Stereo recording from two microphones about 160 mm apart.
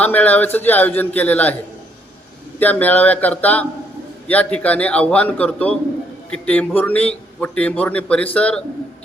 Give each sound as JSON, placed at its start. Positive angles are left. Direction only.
{"t": 0.0, "sound": "a man's voice", "side_deg": 10}
{"t": 2.6, "sound": "a man's voice", "side_deg": 10}